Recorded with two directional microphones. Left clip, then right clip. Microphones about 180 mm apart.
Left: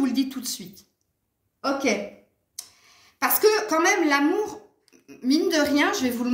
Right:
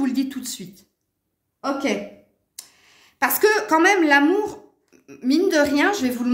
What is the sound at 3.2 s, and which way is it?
A woman's voice, 60° right (ahead or behind).